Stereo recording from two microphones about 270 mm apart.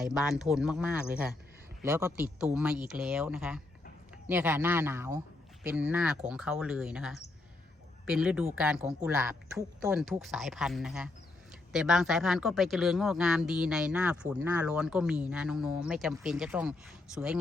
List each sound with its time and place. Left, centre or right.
0.0 s a man's voice: centre